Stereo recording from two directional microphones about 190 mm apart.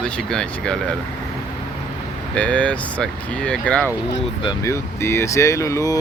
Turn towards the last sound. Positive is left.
turn(degrees=15)  # may be behind; listen again after turning